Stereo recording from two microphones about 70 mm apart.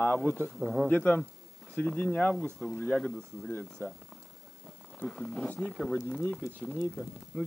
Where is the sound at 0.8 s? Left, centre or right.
Left.